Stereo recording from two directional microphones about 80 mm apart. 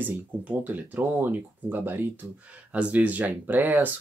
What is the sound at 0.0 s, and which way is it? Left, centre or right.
Speech, right.